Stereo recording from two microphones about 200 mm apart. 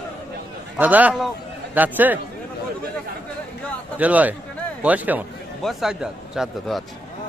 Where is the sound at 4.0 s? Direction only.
5° right (ahead or behind).